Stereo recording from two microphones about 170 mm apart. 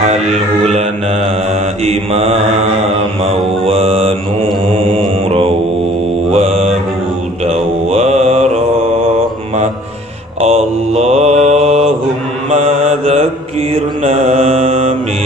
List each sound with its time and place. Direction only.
1.8 s mantra: 40° right (ahead or behind)
3.6 s mantra: 35° right (ahead or behind)
10.4 s mantra: 40° right (ahead or behind)